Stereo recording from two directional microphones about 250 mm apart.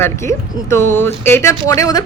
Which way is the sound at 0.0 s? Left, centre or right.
Centre.